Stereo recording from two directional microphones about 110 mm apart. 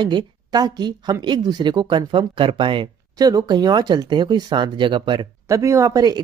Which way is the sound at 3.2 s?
35° right (ahead or behind).